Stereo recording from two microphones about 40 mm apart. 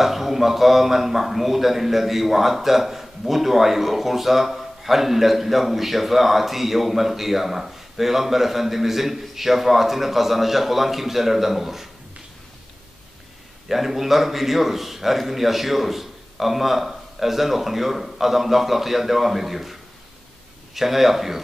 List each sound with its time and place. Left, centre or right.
0.0 s speech: centre
13.7 s speech: centre